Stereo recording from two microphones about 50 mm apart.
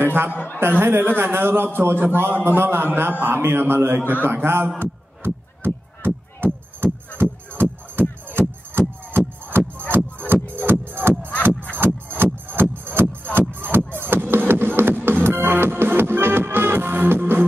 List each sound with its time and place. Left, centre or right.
0.0 s a man's voice: right
3.1 s a man's voice: right
3.3 s a man's voice: right
4.7 s music: right